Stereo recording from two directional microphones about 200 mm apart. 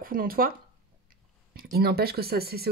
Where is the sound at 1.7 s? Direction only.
50° right (ahead or behind).